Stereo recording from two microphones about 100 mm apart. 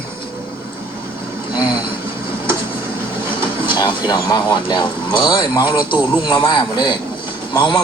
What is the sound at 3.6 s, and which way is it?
Speech, 55° left (ahead or behind).